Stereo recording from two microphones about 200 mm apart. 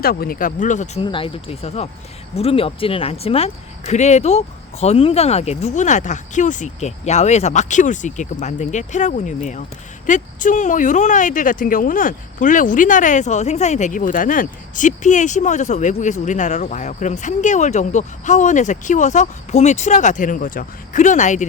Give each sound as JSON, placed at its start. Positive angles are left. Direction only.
{"t": 0.0, "sound": "speech", "side_deg": 50}
{"t": 1.0, "sound": "speech", "side_deg": 25}